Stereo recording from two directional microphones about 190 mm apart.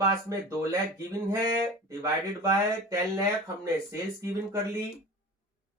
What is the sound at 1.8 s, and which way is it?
Speech, 15° right (ahead or behind).